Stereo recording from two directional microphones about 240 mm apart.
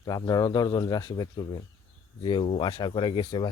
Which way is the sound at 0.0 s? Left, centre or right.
Centre.